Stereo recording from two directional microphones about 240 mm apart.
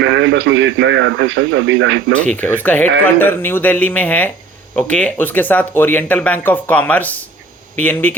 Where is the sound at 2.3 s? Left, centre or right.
Centre.